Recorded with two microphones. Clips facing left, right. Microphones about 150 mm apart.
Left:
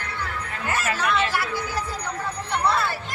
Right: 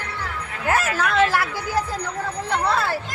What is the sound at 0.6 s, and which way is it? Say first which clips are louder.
Music: right 5 dB; 90° right.